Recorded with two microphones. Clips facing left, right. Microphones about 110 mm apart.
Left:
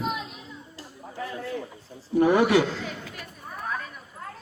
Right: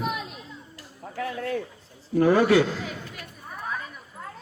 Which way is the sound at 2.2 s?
20° left (ahead or behind).